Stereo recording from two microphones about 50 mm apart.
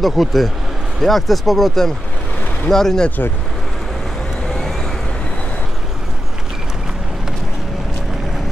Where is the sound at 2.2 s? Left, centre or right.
Left.